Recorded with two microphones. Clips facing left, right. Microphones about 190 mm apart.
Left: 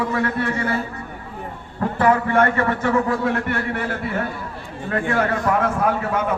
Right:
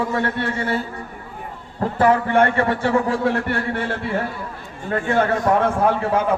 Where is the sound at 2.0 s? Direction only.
30° right (ahead or behind).